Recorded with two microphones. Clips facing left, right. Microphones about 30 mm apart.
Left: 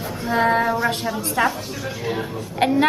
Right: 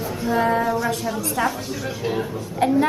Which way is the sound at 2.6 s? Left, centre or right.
Left.